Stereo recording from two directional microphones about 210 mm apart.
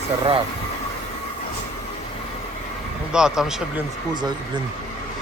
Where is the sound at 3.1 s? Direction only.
5° right (ahead or behind).